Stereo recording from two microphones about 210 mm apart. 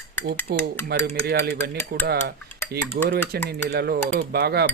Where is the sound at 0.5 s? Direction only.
45° right (ahead or behind).